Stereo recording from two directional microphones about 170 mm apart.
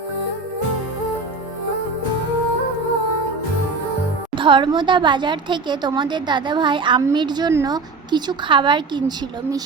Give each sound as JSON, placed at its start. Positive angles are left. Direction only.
{"t": 4.4, "sound": "a woman's voice", "side_deg": -30}